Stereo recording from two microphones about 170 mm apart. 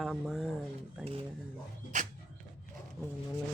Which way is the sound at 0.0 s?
Centre (ahead or behind).